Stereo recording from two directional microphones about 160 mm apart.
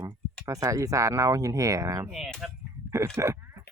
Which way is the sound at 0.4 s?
20° right (ahead or behind).